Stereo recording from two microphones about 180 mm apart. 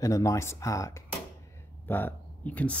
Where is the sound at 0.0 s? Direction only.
20° left (ahead or behind).